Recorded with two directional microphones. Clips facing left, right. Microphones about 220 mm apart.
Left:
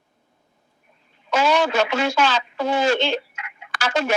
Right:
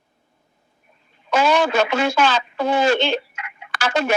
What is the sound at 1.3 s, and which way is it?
Speech, 55° right (ahead or behind).